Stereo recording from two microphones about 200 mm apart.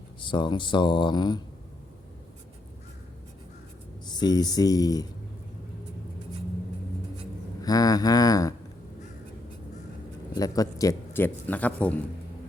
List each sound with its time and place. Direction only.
0.2 s speech: 25° left (ahead or behind)
4.0 s speech: 20° left (ahead or behind)
7.6 s speech: 20° left (ahead or behind)
10.3 s speech: 20° left (ahead or behind)